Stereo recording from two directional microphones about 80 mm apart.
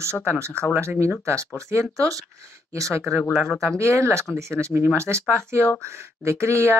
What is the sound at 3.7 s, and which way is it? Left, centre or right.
Speech, right.